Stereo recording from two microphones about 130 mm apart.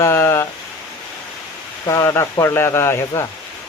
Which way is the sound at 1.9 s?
20° left (ahead or behind).